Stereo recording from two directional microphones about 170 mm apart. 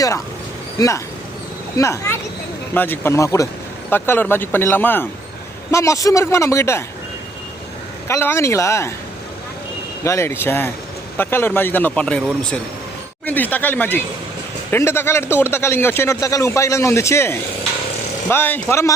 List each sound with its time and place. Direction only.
0.8 s speech: 20° left (ahead or behind)
8.0 s speech: 15° left (ahead or behind)
10.0 s speech: 15° left (ahead or behind)